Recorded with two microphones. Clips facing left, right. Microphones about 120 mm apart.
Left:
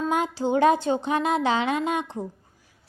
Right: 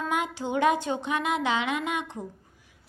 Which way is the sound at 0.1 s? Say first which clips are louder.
Left 5 dB; 35° left (ahead or behind).